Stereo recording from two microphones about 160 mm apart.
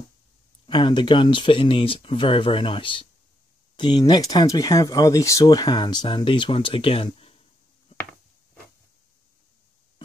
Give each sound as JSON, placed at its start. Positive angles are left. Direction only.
{"t": 0.7, "sound": "speech", "side_deg": 30}